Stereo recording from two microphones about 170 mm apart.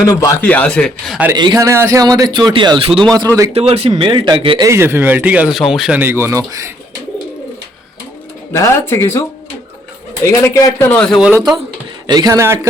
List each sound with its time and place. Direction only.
0.0 s a man's voice: 20° left (ahead or behind)
0.4 s speech: 10° left (ahead or behind)
1.4 s a man's voice: 20° right (ahead or behind)
3.2 s a man's voice: 20° right (ahead or behind)
3.5 s speech: 35° right (ahead or behind)
4.7 s speech: 15° right (ahead or behind)
8.5 s speech: 15° left (ahead or behind)
10.2 s speech: 15° left (ahead or behind)
12.0 s a man's voice: 25° right (ahead or behind)